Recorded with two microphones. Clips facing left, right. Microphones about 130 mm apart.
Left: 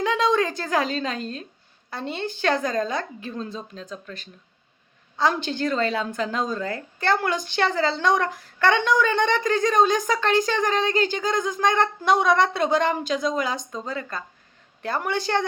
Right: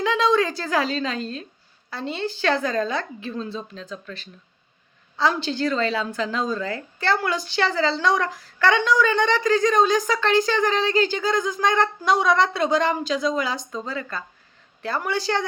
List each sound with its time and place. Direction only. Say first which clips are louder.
0.0 s a woman's voice: right 1 dB; 45° left (ahead or behind)
5.2 s a woman's voice: right 1 dB; 50° left (ahead or behind)